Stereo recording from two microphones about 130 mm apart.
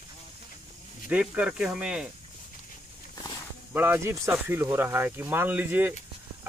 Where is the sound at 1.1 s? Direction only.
10° right (ahead or behind).